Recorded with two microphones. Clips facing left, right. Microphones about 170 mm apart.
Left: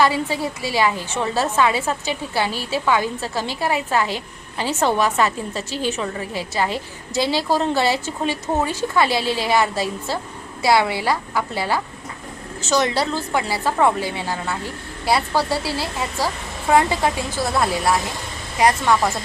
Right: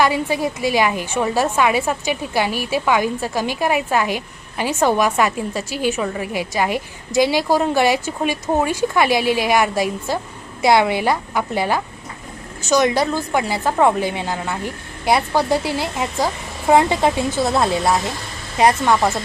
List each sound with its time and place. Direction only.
0.0 s a woman's voice: 15° right (ahead or behind)